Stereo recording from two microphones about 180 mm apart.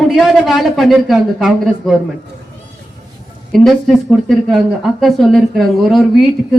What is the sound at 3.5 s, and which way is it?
A woman's voice, centre (ahead or behind).